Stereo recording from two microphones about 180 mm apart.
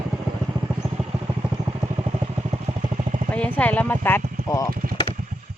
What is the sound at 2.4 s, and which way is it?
Vehicle, 35° right (ahead or behind).